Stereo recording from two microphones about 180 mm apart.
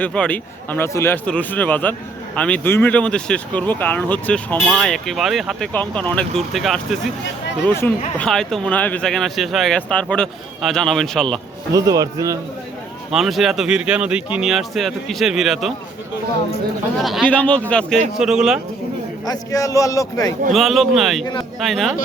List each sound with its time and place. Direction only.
0.0 s a man's voice: 5° left (ahead or behind)
7.6 s a man's voice: 10° left (ahead or behind)
11.7 s speech: 20° right (ahead or behind)
13.1 s speech: centre (ahead or behind)
17.0 s a man's voice: centre (ahead or behind)
19.2 s speech: 20° left (ahead or behind)
20.5 s speech: centre (ahead or behind)